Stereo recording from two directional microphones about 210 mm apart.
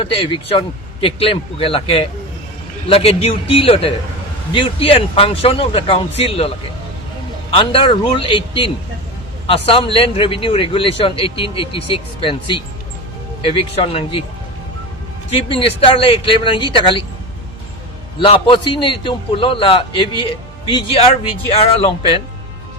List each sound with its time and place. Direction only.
0.1 s a man's voice: 25° left (ahead or behind)
7.5 s a man's voice: 25° left (ahead or behind)
15.3 s a man's voice: 25° left (ahead or behind)
18.2 s a man's voice: 25° left (ahead or behind)